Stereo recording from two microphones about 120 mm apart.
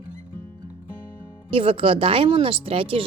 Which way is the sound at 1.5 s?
50° right (ahead or behind).